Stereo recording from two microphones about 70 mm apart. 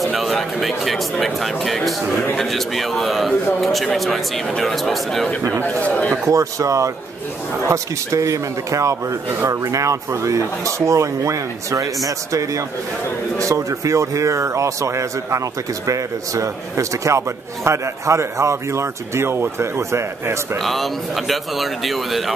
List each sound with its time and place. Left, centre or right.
0.0 s a man's voice: centre
5.6 s a man's voice: left
6.2 s speech: right
20.6 s a man's voice: centre